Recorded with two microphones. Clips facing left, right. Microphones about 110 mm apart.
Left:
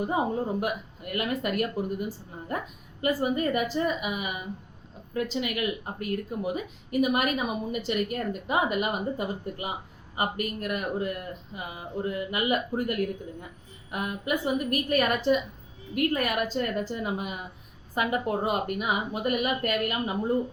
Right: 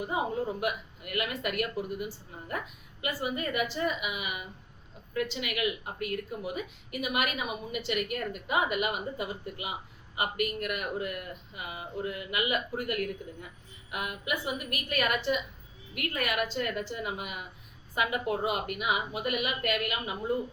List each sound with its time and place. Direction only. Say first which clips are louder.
0.0 s speech: left 4 dB; 35° left (ahead or behind)